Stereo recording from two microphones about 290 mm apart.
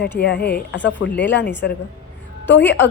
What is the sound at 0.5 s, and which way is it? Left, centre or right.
Speech, left.